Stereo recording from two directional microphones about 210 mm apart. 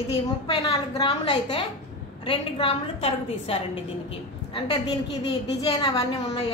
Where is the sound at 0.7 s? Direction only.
25° left (ahead or behind).